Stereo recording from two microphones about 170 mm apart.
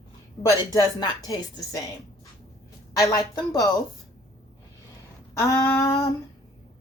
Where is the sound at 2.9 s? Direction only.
20° left (ahead or behind).